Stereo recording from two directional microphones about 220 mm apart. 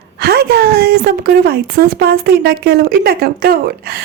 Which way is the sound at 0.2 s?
45° right (ahead or behind).